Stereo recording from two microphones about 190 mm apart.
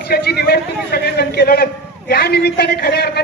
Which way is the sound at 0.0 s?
60° left (ahead or behind).